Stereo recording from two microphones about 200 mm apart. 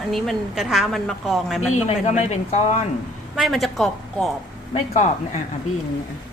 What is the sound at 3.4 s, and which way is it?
Speech, centre (ahead or behind).